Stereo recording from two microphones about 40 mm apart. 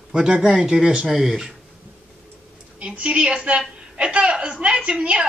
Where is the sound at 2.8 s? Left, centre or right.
Right.